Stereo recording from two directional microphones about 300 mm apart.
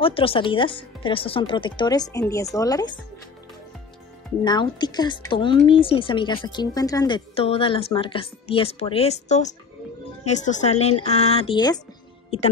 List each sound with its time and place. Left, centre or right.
0.0 s a woman's voice: centre
4.5 s a woman's voice: centre